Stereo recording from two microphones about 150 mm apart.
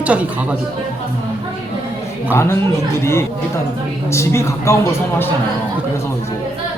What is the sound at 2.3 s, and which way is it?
Speech, 15° left (ahead or behind).